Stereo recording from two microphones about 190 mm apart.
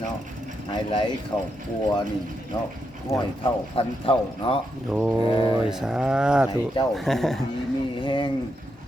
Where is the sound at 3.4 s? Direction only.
30° left (ahead or behind).